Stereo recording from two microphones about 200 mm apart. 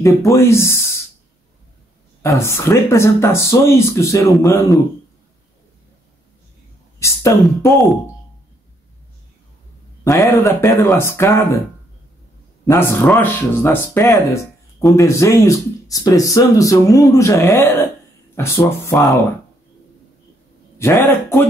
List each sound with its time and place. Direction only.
0.0 s speech: 15° left (ahead or behind)
2.2 s speech: 15° left (ahead or behind)
7.0 s a sound: 15° left (ahead or behind)
7.7 s speech: centre (ahead or behind)
10.0 s speech: 15° left (ahead or behind)
12.6 s speech: 10° left (ahead or behind)
20.7 s a man's voice: 15° left (ahead or behind)